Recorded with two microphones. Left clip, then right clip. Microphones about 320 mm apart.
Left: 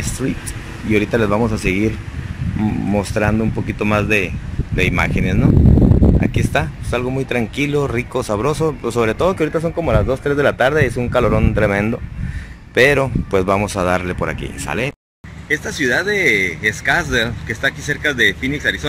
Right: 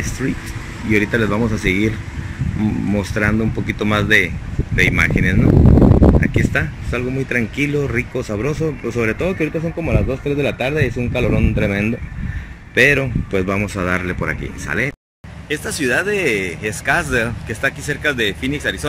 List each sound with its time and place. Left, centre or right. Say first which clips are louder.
0.8 s speech: left 1 dB; centre
2.9 s speech: left 2 dB; centre
5.5 s a sound: right 4 dB; right
6.3 s speech: even; centre
9.4 s speech: left 3 dB; left
11.5 s speech: left 3 dB; left; by 18.9 s centre